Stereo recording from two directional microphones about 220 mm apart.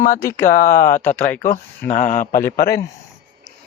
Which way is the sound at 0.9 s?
10° left (ahead or behind).